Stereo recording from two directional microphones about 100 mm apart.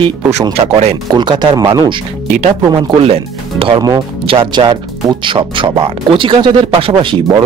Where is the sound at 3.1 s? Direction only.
70° right (ahead or behind).